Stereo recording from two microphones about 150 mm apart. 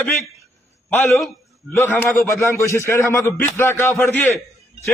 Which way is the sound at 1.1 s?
Centre (ahead or behind).